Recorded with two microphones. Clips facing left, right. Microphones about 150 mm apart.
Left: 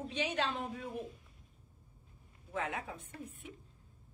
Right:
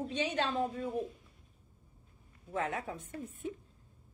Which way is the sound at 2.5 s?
35° right (ahead or behind).